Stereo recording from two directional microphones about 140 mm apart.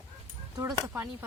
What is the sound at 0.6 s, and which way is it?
Speech, 25° right (ahead or behind).